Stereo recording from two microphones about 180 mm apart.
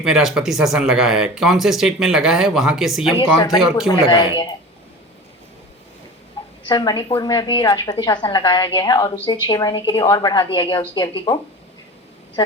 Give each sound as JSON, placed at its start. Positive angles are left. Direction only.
{"t": 0.0, "sound": "speech", "side_deg": 0}
{"t": 6.7, "sound": "a woman's voice", "side_deg": 25}